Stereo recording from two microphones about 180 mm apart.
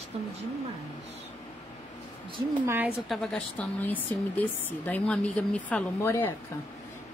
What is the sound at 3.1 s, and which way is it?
Speech, 5° left (ahead or behind).